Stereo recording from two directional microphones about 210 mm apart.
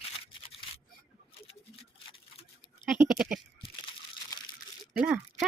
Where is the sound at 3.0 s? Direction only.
Centre (ahead or behind).